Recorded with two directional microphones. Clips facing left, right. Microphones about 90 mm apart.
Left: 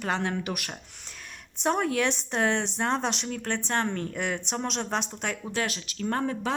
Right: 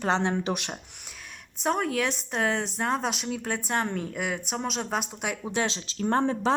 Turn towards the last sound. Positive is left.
turn(degrees=-30)  # may be behind; listen again after turning